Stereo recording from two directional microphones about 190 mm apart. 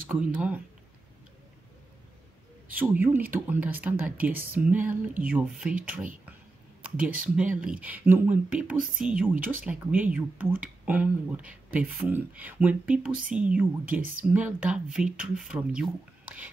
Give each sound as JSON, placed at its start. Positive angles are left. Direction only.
{"t": 0.3, "sound": "speech", "side_deg": -5}
{"t": 2.7, "sound": "speech", "side_deg": -10}